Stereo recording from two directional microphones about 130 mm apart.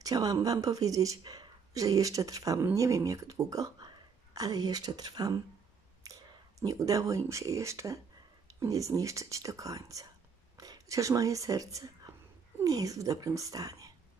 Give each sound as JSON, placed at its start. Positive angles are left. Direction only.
{"t": 0.0, "sound": "speech", "side_deg": -30}
{"t": 6.0, "sound": "clicking", "side_deg": -25}
{"t": 6.6, "sound": "speech", "side_deg": -25}